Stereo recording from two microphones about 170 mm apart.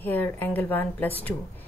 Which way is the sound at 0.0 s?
10° left (ahead or behind).